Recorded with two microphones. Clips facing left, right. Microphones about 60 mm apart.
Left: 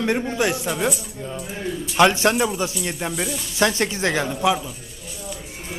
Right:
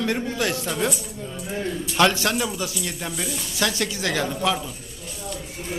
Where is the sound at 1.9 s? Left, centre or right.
Left.